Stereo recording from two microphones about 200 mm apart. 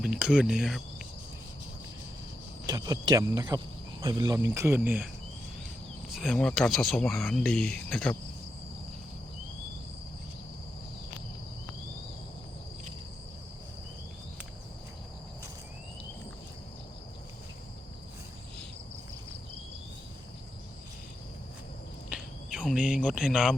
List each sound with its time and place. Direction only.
0.0 s speech: 5° right (ahead or behind)
2.6 s speech: 15° right (ahead or behind)
6.1 s speech: centre (ahead or behind)
22.1 s cricket: centre (ahead or behind)